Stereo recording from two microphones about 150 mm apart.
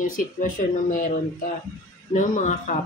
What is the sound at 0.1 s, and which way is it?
Speech, 60° left (ahead or behind).